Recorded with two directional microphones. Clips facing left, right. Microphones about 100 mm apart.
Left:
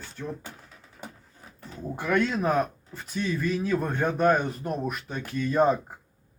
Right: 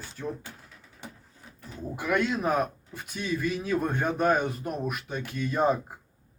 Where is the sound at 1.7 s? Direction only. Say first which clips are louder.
Left 2 dB; 5° right (ahead or behind).